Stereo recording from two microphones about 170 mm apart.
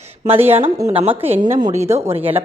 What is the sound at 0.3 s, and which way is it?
A woman's voice, 35° right (ahead or behind).